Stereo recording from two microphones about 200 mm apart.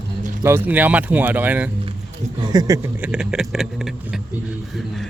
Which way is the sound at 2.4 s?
20° right (ahead or behind).